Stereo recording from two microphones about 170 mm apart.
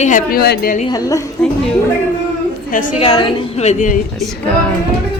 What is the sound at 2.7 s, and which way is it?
Speech, 55° left (ahead or behind).